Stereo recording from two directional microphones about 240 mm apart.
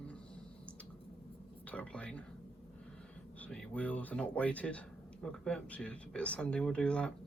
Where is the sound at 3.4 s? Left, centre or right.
Centre.